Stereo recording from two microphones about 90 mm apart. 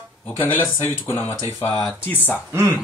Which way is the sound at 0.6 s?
30° left (ahead or behind).